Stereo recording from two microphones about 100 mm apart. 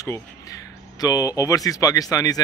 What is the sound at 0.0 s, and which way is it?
Speech, 35° left (ahead or behind).